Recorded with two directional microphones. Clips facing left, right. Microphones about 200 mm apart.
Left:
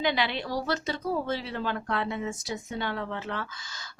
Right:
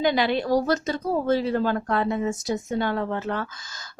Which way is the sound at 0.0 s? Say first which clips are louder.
Right 6 dB; 45° right (ahead or behind).